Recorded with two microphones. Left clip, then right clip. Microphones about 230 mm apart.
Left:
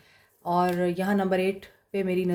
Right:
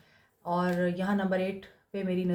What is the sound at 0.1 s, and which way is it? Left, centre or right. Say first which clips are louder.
A woman's voice: left 5 dB; left.